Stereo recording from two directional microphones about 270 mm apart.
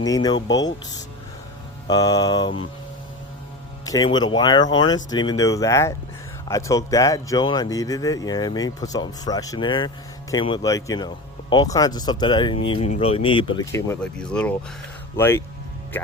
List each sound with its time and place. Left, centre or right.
0.1 s speech: centre
3.8 s speech: centre